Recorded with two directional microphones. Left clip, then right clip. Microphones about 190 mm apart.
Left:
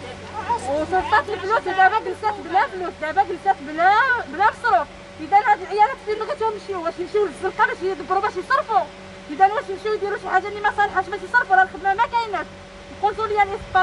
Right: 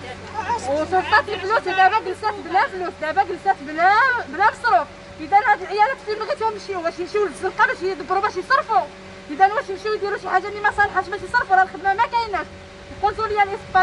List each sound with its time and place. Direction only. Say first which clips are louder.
0.9 s speech: right 1 dB; 10° right (ahead or behind)
8.2 s speech: right 3 dB; 10° right (ahead or behind)